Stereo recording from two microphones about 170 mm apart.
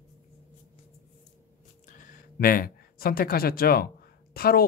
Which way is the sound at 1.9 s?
55° left (ahead or behind).